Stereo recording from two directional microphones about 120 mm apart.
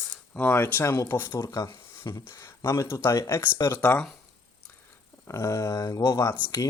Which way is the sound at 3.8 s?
10° left (ahead or behind).